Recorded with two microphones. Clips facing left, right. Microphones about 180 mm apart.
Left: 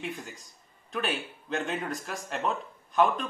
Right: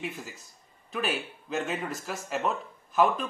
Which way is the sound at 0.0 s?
5° right (ahead or behind).